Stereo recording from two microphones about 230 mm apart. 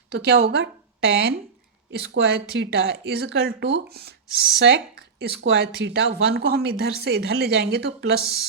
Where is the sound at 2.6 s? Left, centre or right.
Right.